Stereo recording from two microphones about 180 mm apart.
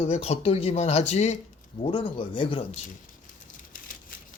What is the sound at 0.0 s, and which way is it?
Speech, 35° left (ahead or behind).